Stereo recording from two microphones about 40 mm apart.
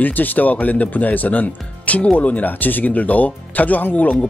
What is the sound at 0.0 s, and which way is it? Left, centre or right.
Speech, left.